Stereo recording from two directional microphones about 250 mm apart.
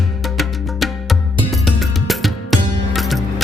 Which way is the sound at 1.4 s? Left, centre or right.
Centre.